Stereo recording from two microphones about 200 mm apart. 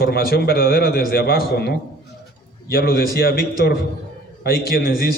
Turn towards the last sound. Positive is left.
turn(degrees=50)  # may be behind; listen again after turning